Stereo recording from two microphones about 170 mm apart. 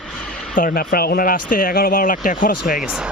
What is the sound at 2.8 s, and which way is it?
Speech, 5° right (ahead or behind).